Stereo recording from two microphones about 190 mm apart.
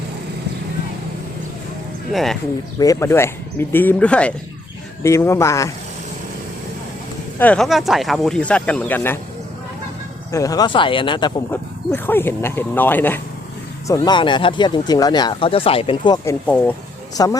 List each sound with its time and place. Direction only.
2.1 s speech: centre (ahead or behind)
2.7 s speech: 20° left (ahead or behind)
7.3 s speech: 5° left (ahead or behind)
10.3 s speech: 20° left (ahead or behind)
11.5 s speech: 10° left (ahead or behind)